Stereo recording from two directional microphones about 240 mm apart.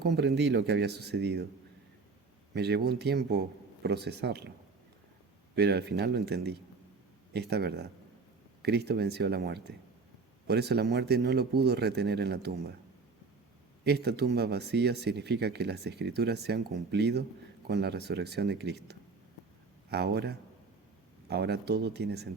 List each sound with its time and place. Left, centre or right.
0.0 s speech: right
2.5 s speech: right
5.5 s speech: right
13.8 s speech: right